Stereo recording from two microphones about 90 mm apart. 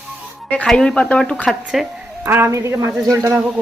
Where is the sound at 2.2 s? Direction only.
25° right (ahead or behind).